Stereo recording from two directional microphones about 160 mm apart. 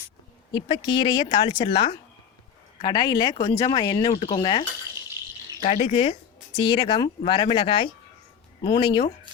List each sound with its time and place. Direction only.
0.5 s speech: 30° left (ahead or behind)
5.6 s speech: 50° left (ahead or behind)
5.9 s speech: 35° left (ahead or behind)